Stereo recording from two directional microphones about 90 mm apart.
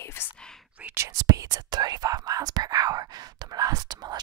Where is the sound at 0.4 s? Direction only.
5° left (ahead or behind).